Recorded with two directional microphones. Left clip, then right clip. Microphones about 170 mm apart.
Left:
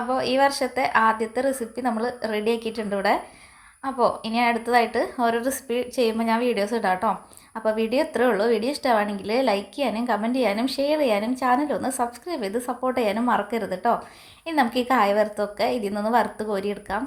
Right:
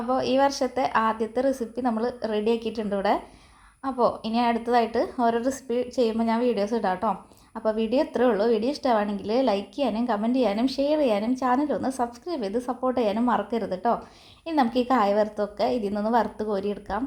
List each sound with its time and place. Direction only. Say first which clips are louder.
0.1 s a woman's voice: left 1 dB; 10° left (ahead or behind)